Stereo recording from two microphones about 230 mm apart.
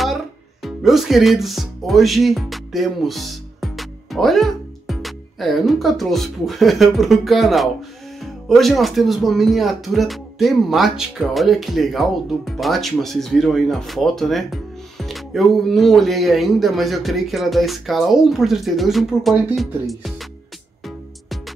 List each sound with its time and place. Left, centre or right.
0.0 s speech: centre